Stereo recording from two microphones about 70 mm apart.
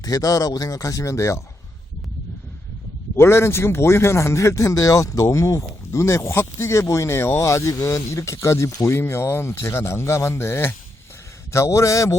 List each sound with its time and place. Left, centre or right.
0.0 s speech: left
3.2 s speech: left